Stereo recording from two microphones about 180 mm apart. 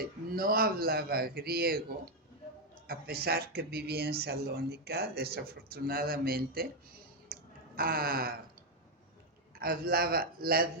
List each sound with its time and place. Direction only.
0.0 s speech: 55° right (ahead or behind)
2.8 s speech: 55° right (ahead or behind)
7.8 s speech: 55° right (ahead or behind)
9.6 s speech: 55° right (ahead or behind)